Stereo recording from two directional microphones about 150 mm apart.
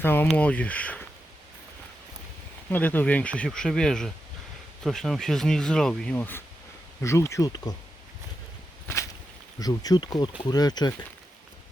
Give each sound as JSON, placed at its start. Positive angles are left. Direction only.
{"t": 0.0, "sound": "speech", "side_deg": 15}
{"t": 2.6, "sound": "speech", "side_deg": 10}
{"t": 9.6, "sound": "speech", "side_deg": 25}